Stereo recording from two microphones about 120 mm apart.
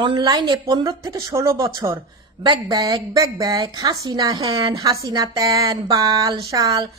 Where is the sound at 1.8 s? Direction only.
35° right (ahead or behind).